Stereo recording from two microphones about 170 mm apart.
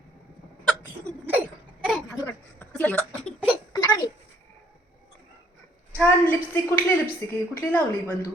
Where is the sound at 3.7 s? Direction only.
20° left (ahead or behind).